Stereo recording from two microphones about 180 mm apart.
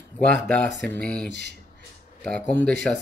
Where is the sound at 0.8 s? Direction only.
5° left (ahead or behind).